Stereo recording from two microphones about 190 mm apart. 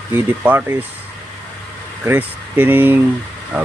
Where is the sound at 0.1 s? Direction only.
10° right (ahead or behind).